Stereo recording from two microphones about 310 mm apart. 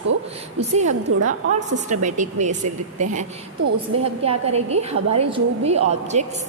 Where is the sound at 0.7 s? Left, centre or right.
Right.